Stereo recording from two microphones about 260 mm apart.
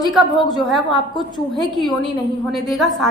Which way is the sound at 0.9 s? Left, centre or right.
Centre.